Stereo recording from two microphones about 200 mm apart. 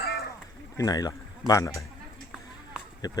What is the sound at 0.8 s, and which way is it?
Speech, 20° left (ahead or behind).